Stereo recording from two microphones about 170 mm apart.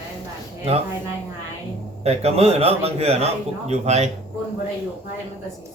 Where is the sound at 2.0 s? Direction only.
35° right (ahead or behind).